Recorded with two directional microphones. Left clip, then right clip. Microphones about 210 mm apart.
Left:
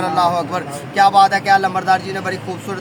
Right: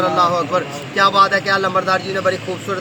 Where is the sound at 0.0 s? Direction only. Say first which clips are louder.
Right 1 dB; 30° left (ahead or behind).